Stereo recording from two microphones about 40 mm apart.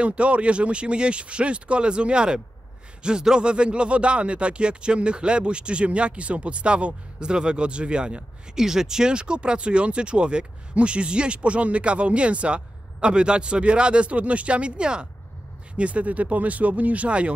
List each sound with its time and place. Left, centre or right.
0.0 s speech: right
8.5 s speech: centre
15.8 s speech: right